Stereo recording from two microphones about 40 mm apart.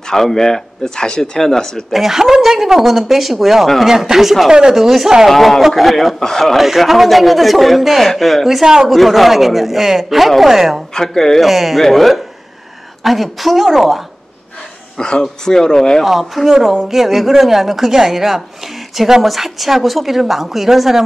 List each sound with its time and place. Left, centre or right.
0.1 s speech: centre
1.9 s speech: centre
4.5 s speech: centre
4.7 s speech: centre
5.3 s speech: centre
6.1 s speech: centre
6.4 s speech: centre
11.0 s speech: centre
11.4 s speech: centre
15.0 s speech: left
16.0 s speech: centre